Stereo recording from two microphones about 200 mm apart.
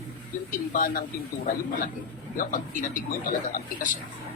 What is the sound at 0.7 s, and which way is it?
Speech, 40° left (ahead or behind).